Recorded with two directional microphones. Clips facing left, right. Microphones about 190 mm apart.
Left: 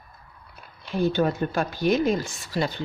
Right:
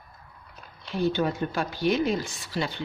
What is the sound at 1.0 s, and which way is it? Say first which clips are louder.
Speech: left 3 dB; 50° left (ahead or behind).